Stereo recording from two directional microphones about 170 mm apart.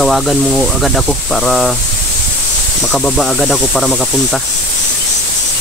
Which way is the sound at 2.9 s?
Centre (ahead or behind).